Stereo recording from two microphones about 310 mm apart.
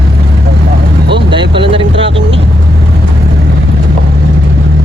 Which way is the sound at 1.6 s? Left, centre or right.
Centre.